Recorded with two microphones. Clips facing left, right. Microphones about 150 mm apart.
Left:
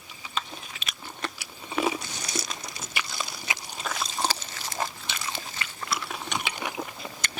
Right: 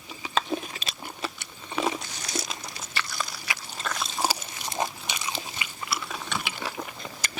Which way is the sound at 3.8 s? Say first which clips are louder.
Even; 5° left (ahead or behind).